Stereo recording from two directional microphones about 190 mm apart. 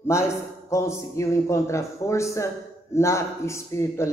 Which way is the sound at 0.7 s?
15° left (ahead or behind).